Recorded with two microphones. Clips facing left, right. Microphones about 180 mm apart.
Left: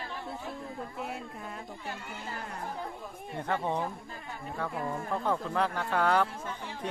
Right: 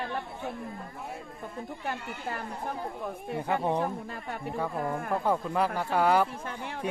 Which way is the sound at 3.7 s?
70° right (ahead or behind).